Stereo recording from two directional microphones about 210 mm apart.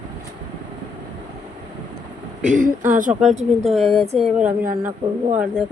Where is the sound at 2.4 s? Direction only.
35° right (ahead or behind).